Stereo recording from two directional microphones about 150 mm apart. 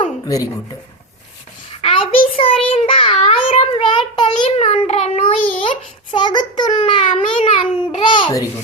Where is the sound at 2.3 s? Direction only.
40° left (ahead or behind).